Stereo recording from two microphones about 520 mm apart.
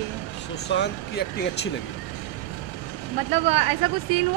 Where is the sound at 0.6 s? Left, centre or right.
Centre.